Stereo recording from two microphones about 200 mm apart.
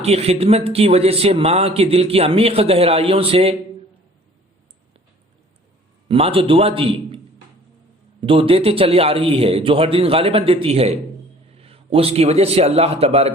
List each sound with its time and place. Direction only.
0.0 s speech: 30° right (ahead or behind)
6.1 s speech: 30° right (ahead or behind)
8.2 s a man's voice: 25° right (ahead or behind)